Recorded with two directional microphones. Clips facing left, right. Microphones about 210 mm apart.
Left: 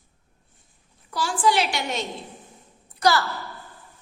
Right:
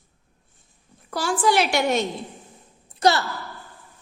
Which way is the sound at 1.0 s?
50° right (ahead or behind).